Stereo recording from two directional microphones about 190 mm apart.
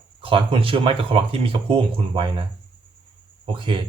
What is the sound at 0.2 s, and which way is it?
Speech, 30° right (ahead or behind).